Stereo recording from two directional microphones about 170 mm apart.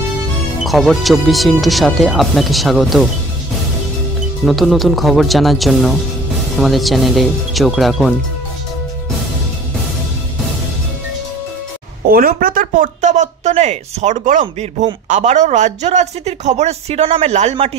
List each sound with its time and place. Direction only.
0.7 s speech: centre (ahead or behind)
4.5 s speech: centre (ahead or behind)
12.1 s speech: 60° right (ahead or behind)
14.4 s a man's voice: 30° right (ahead or behind)
15.0 s a man's voice: 45° right (ahead or behind)